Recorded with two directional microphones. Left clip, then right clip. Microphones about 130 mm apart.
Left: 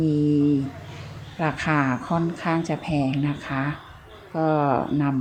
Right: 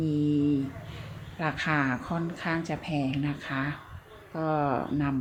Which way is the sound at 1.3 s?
40° left (ahead or behind).